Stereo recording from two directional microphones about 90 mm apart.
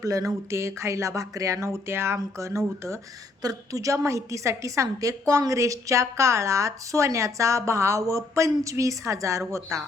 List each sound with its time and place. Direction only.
0.0 s a woman's voice: 40° right (ahead or behind)